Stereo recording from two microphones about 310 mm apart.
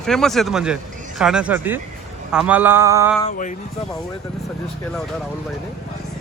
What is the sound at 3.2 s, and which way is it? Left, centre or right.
Speech, left.